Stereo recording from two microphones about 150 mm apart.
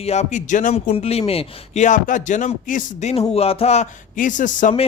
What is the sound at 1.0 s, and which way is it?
Speech, 40° left (ahead or behind).